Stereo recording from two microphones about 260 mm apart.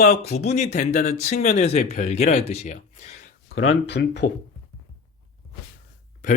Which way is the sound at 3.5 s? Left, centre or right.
Left.